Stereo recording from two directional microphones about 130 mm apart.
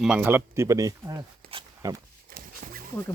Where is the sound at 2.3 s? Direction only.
90° right.